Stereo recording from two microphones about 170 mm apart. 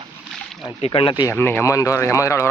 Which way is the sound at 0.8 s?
30° left (ahead or behind).